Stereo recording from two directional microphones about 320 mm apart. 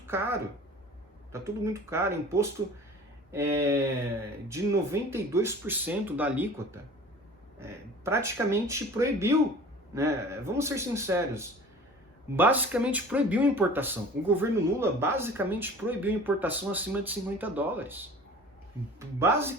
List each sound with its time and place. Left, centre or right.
0.0 s a woman's voice: centre